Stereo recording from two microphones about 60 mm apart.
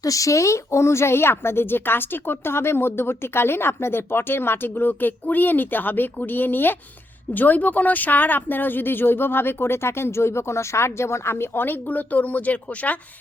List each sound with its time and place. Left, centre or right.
0.0 s speech: left